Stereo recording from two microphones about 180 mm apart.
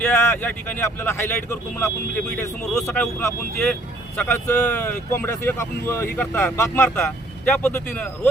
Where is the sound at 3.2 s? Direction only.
15° left (ahead or behind).